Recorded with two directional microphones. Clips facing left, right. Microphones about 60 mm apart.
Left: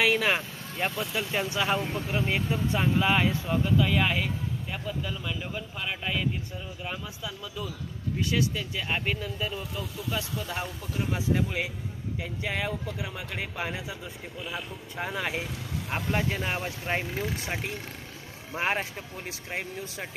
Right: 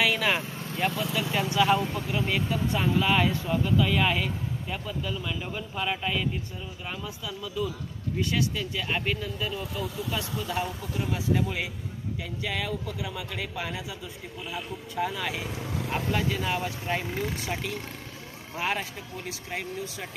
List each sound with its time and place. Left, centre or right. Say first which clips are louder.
0.0 s vehicle: left 1 dB; centre
1.1 s speech: right 3 dB; centre
7.2 s speech: right 6 dB; centre
11.3 s speech: even; centre
12.4 s speech: even; left